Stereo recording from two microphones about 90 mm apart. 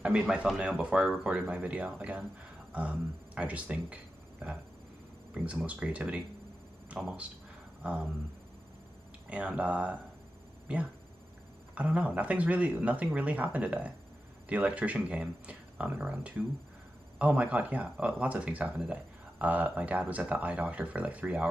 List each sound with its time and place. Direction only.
0.0 s speech: 15° right (ahead or behind)
7.8 s a sound: 15° right (ahead or behind)
9.3 s speech: 15° right (ahead or behind)
11.7 s speech: 15° right (ahead or behind)